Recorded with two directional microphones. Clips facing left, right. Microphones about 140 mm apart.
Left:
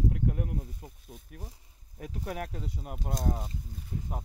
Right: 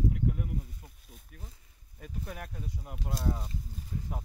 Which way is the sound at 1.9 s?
80° left.